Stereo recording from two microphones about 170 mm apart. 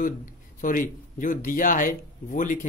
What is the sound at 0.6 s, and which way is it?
Speech, 50° left (ahead or behind).